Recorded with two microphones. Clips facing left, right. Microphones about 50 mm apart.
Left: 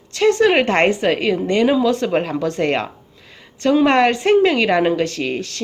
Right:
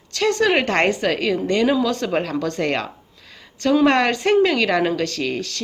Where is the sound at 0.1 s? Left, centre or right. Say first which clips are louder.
Left 4 dB; centre.